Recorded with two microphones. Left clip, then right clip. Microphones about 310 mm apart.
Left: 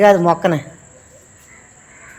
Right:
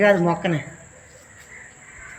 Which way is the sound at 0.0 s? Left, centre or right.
Centre.